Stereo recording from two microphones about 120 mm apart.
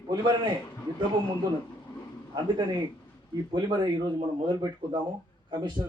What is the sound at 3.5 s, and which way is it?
A man's voice, 40° right (ahead or behind).